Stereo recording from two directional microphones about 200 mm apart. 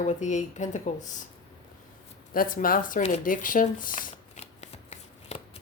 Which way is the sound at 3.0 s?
40° left (ahead or behind).